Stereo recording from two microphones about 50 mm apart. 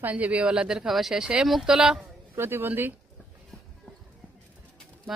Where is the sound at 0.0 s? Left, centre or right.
Right.